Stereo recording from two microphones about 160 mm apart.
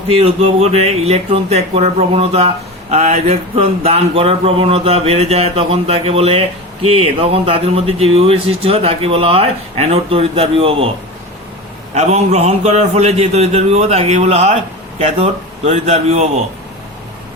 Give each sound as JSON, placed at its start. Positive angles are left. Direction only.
{"t": 0.1, "sound": "speech", "side_deg": -35}
{"t": 11.9, "sound": "a man's voice", "side_deg": -40}